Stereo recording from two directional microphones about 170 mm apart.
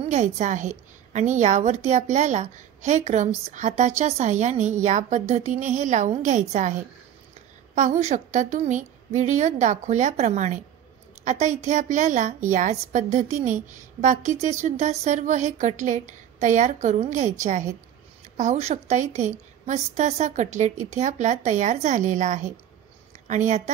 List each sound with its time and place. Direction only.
0.0 s a woman's voice: 45° right (ahead or behind)